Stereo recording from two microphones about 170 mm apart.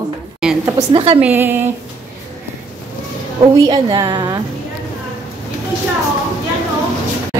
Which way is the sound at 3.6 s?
25° right (ahead or behind).